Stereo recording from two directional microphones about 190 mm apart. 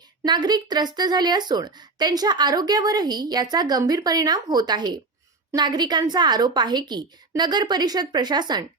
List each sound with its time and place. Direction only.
0.3 s a woman's voice: 20° right (ahead or behind)